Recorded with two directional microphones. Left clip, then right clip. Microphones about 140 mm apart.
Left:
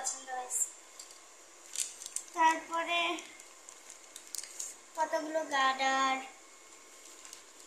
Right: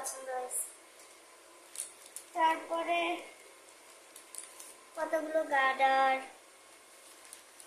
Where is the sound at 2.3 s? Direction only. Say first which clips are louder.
Left 1 dB; 25° right (ahead or behind).